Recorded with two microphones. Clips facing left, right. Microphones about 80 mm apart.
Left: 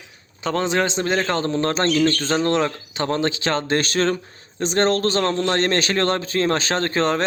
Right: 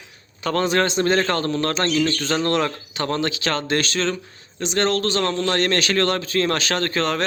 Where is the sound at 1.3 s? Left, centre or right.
Centre.